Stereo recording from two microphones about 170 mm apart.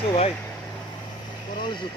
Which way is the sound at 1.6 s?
25° left (ahead or behind).